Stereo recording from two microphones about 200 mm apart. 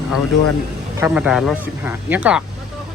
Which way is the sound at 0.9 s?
10° right (ahead or behind).